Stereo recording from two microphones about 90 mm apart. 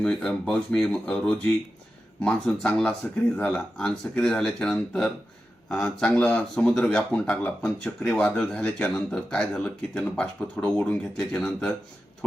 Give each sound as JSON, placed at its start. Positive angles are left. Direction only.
{"t": 0.0, "sound": "speech", "side_deg": 5}